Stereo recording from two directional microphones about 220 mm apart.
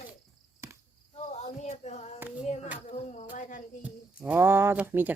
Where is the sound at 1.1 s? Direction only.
30° left (ahead or behind).